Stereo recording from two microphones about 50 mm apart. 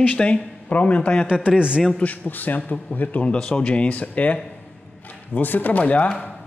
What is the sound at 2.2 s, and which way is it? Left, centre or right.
A man's voice, left.